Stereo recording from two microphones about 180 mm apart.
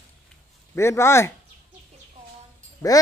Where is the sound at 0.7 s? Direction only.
15° left (ahead or behind).